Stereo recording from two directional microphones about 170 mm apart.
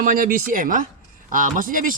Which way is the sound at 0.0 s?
55° right (ahead or behind).